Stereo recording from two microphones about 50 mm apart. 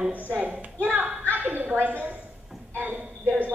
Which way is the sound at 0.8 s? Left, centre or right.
Right.